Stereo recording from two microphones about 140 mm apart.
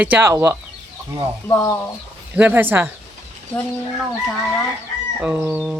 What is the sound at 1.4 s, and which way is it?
Speech, 20° left (ahead or behind).